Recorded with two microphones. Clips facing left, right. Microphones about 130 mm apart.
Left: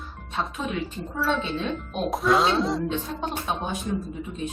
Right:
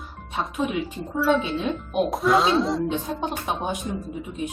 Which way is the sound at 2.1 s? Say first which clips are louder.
Even; centre (ahead or behind).